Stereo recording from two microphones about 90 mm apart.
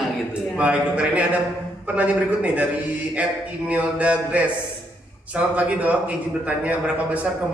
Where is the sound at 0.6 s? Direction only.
15° right (ahead or behind).